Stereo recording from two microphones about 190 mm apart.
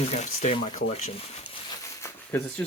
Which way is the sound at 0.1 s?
35° left (ahead or behind).